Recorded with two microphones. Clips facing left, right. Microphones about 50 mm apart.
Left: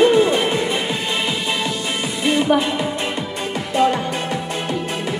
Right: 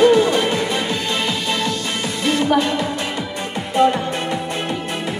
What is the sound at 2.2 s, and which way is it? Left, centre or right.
Music, centre.